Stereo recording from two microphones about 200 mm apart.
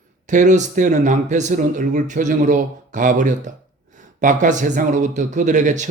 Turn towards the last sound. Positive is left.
turn(degrees=-40)  # may be behind; listen again after turning